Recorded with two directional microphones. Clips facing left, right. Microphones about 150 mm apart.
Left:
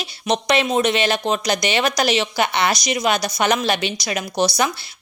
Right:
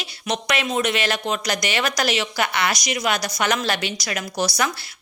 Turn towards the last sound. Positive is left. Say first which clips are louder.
# left 4 dB
turn(degrees=25)  # may be behind; listen again after turning